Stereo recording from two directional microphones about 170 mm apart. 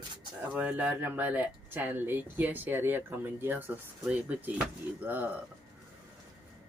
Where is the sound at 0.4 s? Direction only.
10° right (ahead or behind).